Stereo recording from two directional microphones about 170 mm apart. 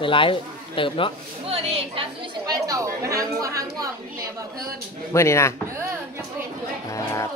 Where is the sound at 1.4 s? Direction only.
35° right (ahead or behind).